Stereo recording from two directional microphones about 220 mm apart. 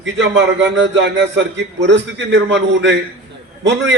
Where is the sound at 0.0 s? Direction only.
55° right (ahead or behind).